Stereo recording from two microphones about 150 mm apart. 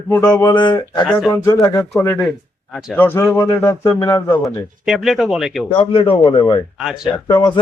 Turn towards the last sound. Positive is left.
turn(degrees=30)  # may be behind; listen again after turning